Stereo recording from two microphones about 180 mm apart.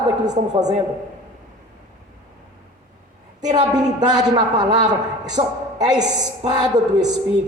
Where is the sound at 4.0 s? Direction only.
20° right (ahead or behind).